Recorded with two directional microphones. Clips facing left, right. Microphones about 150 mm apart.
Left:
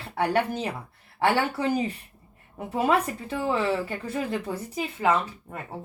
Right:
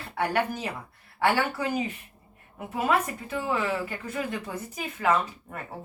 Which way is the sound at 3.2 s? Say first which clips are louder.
Left 3 dB; 35° left (ahead or behind).